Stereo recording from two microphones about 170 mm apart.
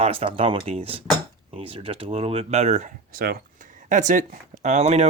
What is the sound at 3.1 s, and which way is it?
Speech, 60° right (ahead or behind).